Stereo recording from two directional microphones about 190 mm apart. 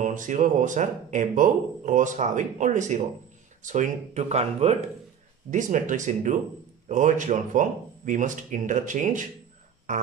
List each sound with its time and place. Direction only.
0.0 s speech: 40° right (ahead or behind)